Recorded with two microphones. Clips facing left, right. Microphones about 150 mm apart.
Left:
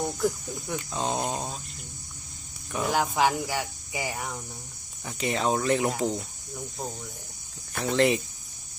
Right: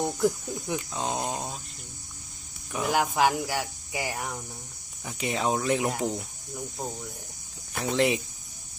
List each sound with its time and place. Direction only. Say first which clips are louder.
0.2 s speech: right 2 dB; 20° right (ahead or behind)
0.9 s speech: left 5 dB; 5° right (ahead or behind)
2.7 s speech: even; 5° right (ahead or behind)